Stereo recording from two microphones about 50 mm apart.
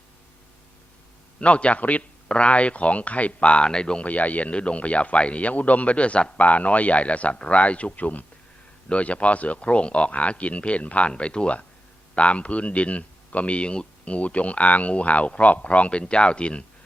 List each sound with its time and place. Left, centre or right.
1.4 s speech: left
4.0 s speech: left